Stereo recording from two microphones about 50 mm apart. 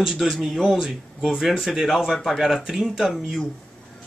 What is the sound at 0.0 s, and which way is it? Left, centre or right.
Speech, centre.